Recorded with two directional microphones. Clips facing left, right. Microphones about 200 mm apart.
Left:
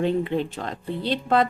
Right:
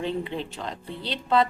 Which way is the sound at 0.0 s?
50° left (ahead or behind).